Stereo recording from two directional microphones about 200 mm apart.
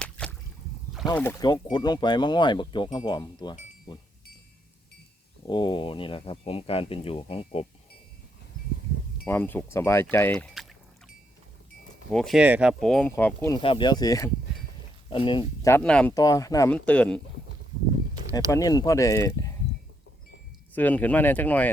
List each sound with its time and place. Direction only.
0.0 s a sound: 5° left (ahead or behind)
1.1 s speech: 10° left (ahead or behind)
5.5 s speech: 25° left (ahead or behind)
9.2 s speech: 10° left (ahead or behind)
12.1 s speech: centre (ahead or behind)
13.6 s speech: 25° left (ahead or behind)
15.7 s speech: 5° left (ahead or behind)
16.1 s speech: 15° left (ahead or behind)
18.5 s speech: 20° left (ahead or behind)
20.7 s speech: 10° left (ahead or behind)